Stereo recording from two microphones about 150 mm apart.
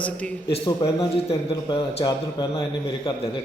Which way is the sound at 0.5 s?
35° left (ahead or behind).